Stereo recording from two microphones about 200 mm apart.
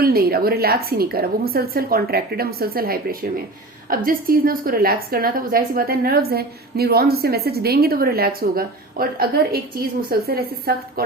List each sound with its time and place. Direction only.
0.0 s a woman's voice: 50° right (ahead or behind)